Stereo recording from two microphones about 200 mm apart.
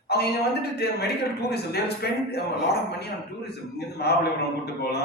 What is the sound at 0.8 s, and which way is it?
A man's voice, 55° left (ahead or behind).